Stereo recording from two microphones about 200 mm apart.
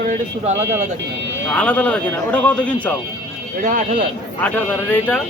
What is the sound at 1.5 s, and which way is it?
Speech, 5° left (ahead or behind).